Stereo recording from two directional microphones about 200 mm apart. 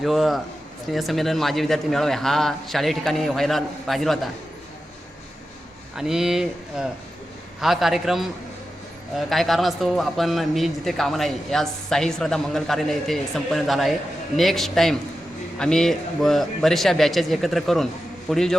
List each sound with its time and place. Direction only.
0.0 s a man's voice: centre (ahead or behind)
6.0 s a man's voice: centre (ahead or behind)